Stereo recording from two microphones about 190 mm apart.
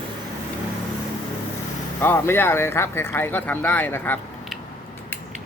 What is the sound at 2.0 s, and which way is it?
Speech, 10° left (ahead or behind).